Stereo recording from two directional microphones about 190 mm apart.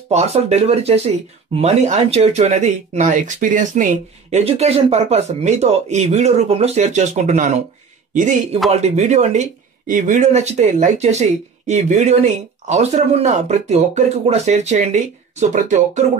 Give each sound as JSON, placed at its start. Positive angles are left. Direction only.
{"t": 0.1, "sound": "speech", "side_deg": -35}